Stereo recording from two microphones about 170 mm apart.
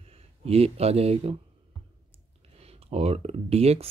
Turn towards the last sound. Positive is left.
turn(degrees=-35)  # may be behind; listen again after turning